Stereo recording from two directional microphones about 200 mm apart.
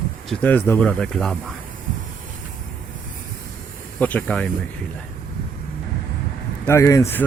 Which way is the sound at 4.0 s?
10° left (ahead or behind).